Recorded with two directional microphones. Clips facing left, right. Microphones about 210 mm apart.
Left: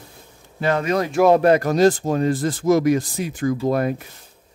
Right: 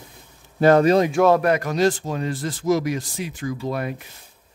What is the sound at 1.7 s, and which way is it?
Speech, 45° left (ahead or behind).